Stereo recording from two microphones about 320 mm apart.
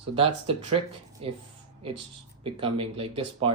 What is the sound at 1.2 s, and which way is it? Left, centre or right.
Speech, centre.